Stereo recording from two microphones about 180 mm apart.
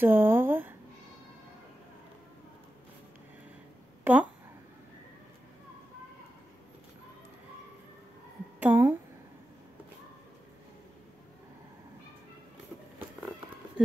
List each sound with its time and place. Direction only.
0.0 s speech: 10° right (ahead or behind)
4.0 s a sound: 10° right (ahead or behind)
8.5 s speech: 10° right (ahead or behind)